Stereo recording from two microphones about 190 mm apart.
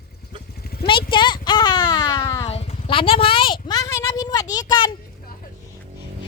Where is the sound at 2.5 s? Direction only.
30° left (ahead or behind).